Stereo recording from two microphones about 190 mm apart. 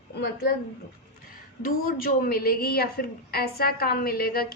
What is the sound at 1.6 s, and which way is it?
A woman's voice, 50° left (ahead or behind).